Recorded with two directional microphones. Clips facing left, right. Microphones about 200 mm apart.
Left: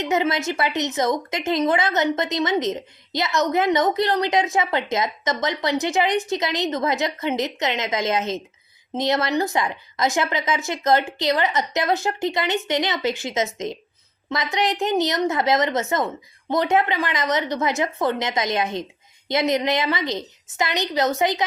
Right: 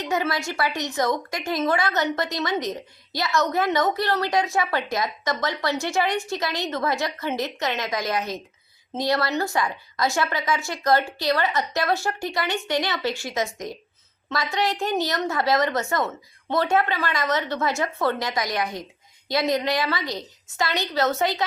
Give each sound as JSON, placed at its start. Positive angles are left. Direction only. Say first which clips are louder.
{"t": 0.0, "sound": "a woman's voice", "louder": "left 4 dB", "side_deg": 20}